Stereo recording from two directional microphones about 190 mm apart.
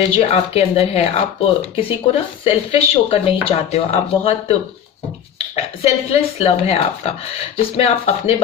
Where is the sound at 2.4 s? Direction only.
30° left (ahead or behind).